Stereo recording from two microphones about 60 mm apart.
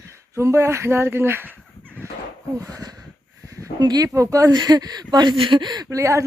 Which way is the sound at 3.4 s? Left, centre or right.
Right.